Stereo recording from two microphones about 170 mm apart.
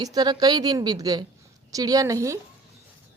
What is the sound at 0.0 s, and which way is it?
A woman's voice, 25° right (ahead or behind).